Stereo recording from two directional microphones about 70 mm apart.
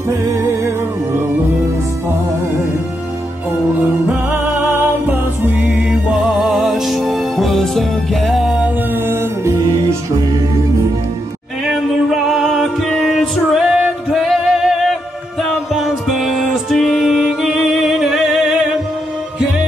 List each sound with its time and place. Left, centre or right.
4.1 s music: right; by 8.6 s centre
8.9 s music: right
11.6 s music: centre